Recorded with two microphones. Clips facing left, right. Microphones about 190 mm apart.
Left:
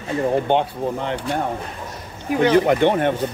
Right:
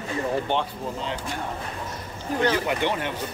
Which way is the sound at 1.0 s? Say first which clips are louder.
Left 7 dB; 65° left (ahead or behind).